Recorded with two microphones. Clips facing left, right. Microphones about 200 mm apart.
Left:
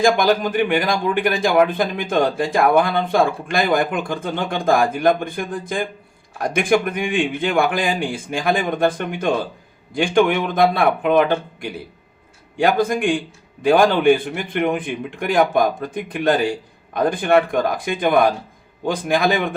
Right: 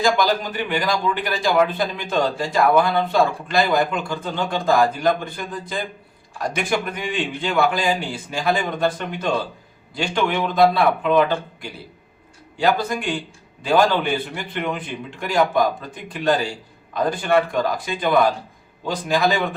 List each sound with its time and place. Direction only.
0.0 s a man's voice: 50° left (ahead or behind)